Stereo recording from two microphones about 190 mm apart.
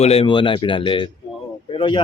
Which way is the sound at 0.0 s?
30° left (ahead or behind).